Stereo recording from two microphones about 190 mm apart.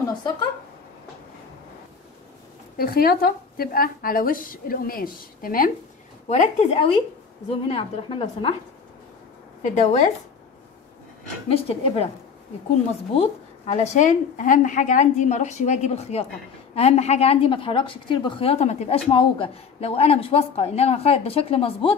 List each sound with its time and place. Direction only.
2.8 s a woman's voice: 50° left (ahead or behind)
6.2 s a woman's voice: 35° left (ahead or behind)
9.6 s a woman's voice: 40° left (ahead or behind)
11.4 s a woman's voice: 30° left (ahead or behind)
13.1 s a woman's voice: 30° left (ahead or behind)